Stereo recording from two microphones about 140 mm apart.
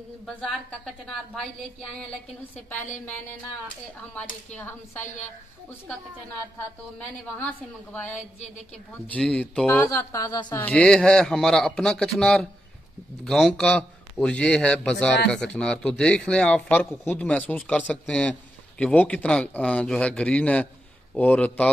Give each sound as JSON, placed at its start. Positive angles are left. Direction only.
{"t": 0.4, "sound": "a man's voice", "side_deg": 5}
{"t": 4.5, "sound": "a man's voice", "side_deg": 10}
{"t": 7.4, "sound": "a man's voice", "side_deg": 10}
{"t": 9.7, "sound": "a woman's voice", "side_deg": 20}
{"t": 10.6, "sound": "a man's voice", "side_deg": 5}